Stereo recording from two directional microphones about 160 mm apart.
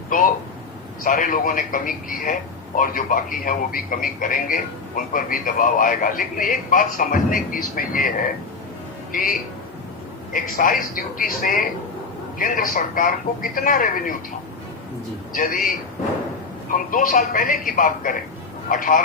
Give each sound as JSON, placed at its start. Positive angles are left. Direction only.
{"t": 0.1, "sound": "a man's voice", "side_deg": 55}
{"t": 9.1, "sound": "a man's voice", "side_deg": 55}
{"t": 10.3, "sound": "a man's voice", "side_deg": 60}
{"t": 15.3, "sound": "a man's voice", "side_deg": 60}